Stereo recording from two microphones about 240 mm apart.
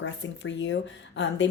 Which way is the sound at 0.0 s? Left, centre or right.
Left.